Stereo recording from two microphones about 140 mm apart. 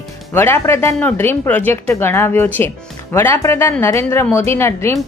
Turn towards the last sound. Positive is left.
turn(degrees=20)  # may be behind; listen again after turning